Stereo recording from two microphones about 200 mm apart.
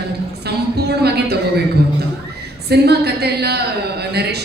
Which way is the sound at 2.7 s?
55° right (ahead or behind).